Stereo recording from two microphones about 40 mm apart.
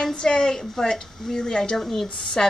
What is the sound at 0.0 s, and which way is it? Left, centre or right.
A woman's voice, centre.